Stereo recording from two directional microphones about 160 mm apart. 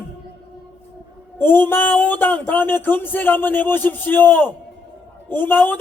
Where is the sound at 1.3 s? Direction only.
15° left (ahead or behind).